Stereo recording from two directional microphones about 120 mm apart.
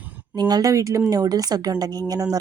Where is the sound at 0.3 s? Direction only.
35° right (ahead or behind).